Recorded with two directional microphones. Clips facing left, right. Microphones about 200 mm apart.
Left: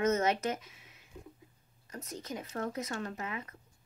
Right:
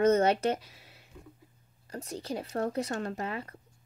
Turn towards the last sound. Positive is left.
turn(degrees=-35)  # may be behind; listen again after turning